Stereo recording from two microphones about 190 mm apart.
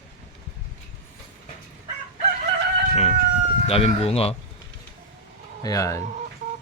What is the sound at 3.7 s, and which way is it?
Speech, 30° left (ahead or behind).